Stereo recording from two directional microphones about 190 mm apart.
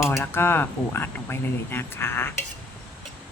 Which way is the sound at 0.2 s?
10° left (ahead or behind).